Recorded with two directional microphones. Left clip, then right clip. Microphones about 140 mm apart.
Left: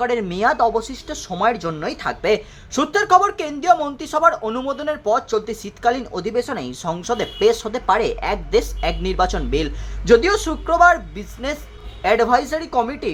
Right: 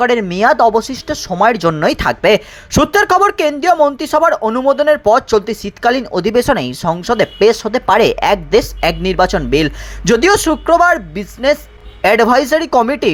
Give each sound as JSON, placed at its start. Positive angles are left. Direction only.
{"t": 0.0, "sound": "speech", "side_deg": -35}
{"t": 1.8, "sound": "speech", "side_deg": -55}